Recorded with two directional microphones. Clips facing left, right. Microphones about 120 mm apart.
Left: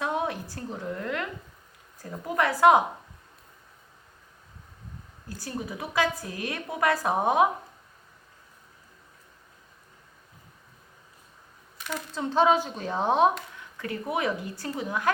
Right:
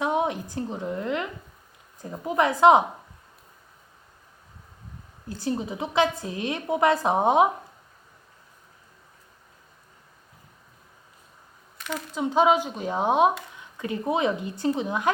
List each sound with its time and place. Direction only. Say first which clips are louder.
0.0 s a woman's voice: right 4 dB; 20° right (ahead or behind)
5.3 s a woman's voice: right 6 dB; 20° right (ahead or behind)
12.1 s a woman's voice: right 2 dB; 15° right (ahead or behind)